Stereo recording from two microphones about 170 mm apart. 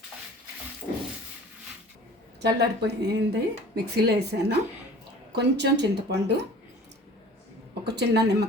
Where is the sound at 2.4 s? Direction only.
85° right.